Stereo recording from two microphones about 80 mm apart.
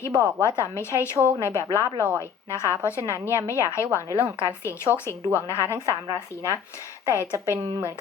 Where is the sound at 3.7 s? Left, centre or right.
Left.